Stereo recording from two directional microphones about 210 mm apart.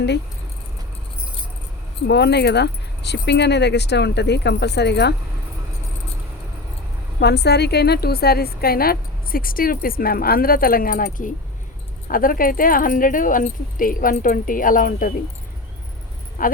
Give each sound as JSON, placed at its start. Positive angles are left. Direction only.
{"t": 2.0, "sound": "a woman's voice", "side_deg": 55}
{"t": 7.2, "sound": "a woman's voice", "side_deg": 50}
{"t": 16.4, "sound": "speech", "side_deg": 40}